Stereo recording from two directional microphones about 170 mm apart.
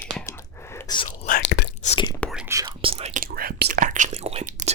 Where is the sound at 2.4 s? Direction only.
20° right (ahead or behind).